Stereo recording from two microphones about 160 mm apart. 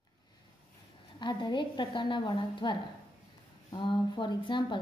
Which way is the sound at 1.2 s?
30° left (ahead or behind).